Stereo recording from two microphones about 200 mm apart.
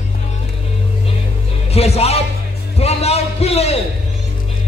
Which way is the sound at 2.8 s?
30° left (ahead or behind).